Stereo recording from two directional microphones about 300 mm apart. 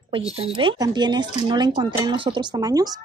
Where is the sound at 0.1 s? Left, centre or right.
Centre.